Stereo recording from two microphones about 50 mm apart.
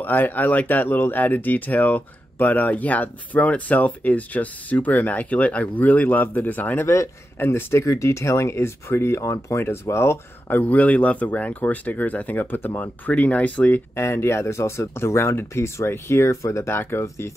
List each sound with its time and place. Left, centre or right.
0.0 s speech: left
7.3 s speech: left
7.8 s speech: left
10.5 s speech: left
13.9 s speech: left